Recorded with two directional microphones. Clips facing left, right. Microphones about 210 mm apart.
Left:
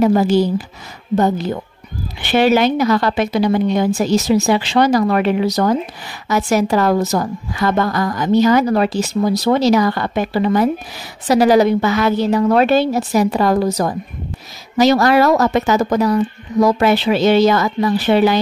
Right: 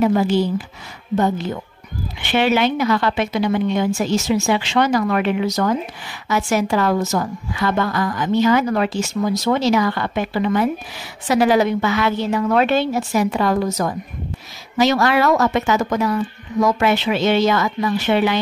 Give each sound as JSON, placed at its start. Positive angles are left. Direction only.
{"t": 0.0, "sound": "a woman's voice", "side_deg": 40}